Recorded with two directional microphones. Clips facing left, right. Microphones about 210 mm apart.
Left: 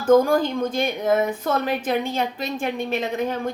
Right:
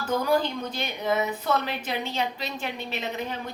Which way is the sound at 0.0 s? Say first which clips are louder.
Left 8 dB; 45° left (ahead or behind).